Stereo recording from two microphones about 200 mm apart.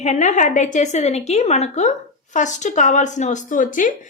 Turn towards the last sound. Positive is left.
turn(degrees=40)  # may be behind; listen again after turning